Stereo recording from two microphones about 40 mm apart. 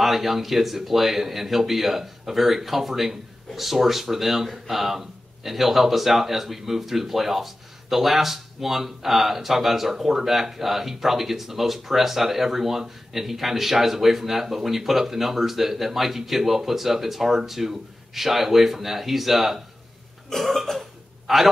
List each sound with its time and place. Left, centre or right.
0.0 s speech: centre
20.2 s burping: centre